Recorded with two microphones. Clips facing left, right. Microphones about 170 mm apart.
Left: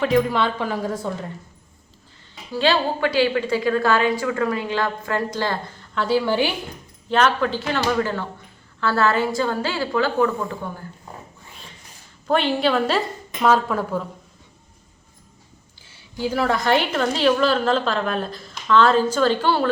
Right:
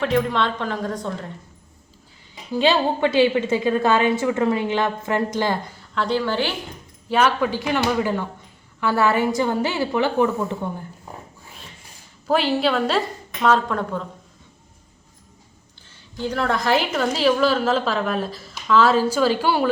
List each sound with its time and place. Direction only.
0.0 s a woman's voice: 5° left (ahead or behind)
2.5 s a woman's voice: 20° right (ahead or behind)
5.8 s a woman's voice: centre (ahead or behind)
7.1 s a woman's voice: 10° right (ahead or behind)
12.3 s a woman's voice: 5° right (ahead or behind)
15.9 s a woman's voice: 10° left (ahead or behind); by 19.7 s 10° right (ahead or behind)